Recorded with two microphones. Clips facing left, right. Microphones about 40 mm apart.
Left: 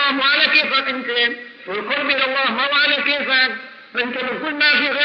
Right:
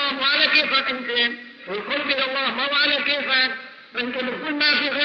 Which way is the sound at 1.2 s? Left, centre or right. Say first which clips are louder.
Left 4 dB; left.